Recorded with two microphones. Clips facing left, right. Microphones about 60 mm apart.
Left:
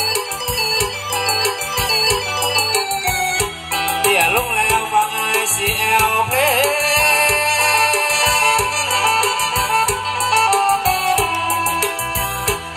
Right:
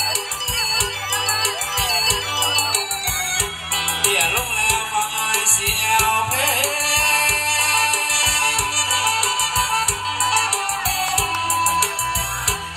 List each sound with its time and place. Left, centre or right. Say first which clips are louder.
1.4 s music: left 3 dB; left
4.0 s music: left 6 dB; left